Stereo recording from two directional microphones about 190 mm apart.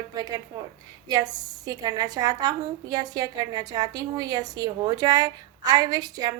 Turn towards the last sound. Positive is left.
turn(degrees=-20)  # may be behind; listen again after turning